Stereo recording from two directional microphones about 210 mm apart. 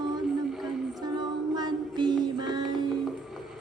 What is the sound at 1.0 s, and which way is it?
Music, 20° right (ahead or behind).